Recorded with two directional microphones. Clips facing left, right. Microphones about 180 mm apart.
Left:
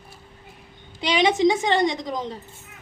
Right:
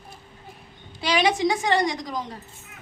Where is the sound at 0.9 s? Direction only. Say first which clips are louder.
Left 2 dB; 20° left (ahead or behind).